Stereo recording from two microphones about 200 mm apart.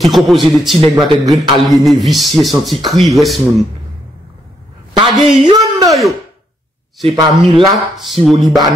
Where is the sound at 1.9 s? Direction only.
Centre (ahead or behind).